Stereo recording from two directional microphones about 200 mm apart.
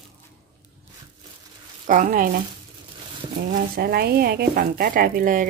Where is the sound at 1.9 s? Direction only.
40° right (ahead or behind).